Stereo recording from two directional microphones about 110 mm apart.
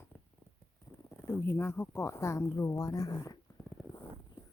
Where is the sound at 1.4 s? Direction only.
20° left (ahead or behind).